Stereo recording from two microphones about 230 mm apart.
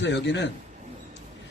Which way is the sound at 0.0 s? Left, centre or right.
Left.